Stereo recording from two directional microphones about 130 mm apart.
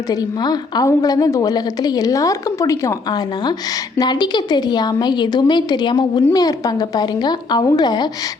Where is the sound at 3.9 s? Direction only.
35° left (ahead or behind).